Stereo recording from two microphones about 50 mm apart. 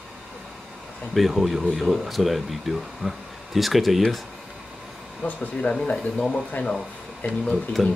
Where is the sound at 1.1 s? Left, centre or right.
Centre.